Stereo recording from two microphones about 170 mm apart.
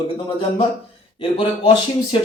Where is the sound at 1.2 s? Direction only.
35° left (ahead or behind).